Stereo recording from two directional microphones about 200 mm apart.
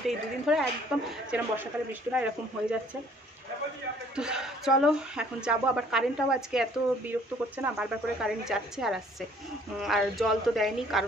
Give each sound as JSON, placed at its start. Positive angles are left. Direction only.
{"t": 0.5, "sound": "a woman's voice", "side_deg": 0}
{"t": 4.1, "sound": "a woman's voice", "side_deg": -5}